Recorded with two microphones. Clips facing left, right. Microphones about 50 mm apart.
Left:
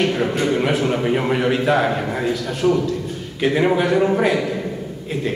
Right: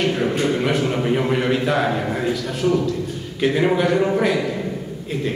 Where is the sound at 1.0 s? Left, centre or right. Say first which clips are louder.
Left 1 dB; centre.